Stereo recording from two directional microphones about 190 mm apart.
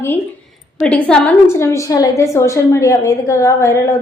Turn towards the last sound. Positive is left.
turn(degrees=15)  # may be behind; listen again after turning